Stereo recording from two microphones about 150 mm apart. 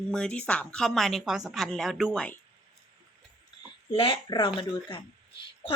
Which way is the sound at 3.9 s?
35° left (ahead or behind).